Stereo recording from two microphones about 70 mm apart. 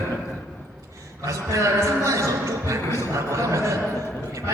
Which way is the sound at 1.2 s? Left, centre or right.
Right.